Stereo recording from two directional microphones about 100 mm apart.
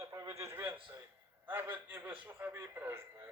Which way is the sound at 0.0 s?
30° right (ahead or behind).